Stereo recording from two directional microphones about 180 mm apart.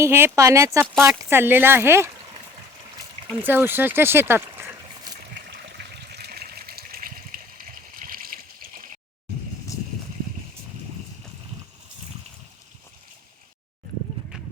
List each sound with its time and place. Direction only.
0.0 s speech: 15° right (ahead or behind)
3.4 s speech: 10° right (ahead or behind)
5.7 s water: 65° right (ahead or behind)